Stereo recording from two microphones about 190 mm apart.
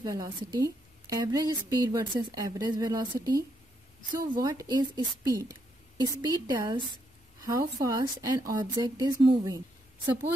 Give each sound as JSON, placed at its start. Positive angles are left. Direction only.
{"t": 0.0, "sound": "a woman's voice", "side_deg": -20}